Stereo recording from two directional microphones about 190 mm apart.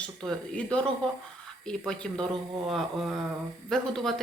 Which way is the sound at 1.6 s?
5° left (ahead or behind).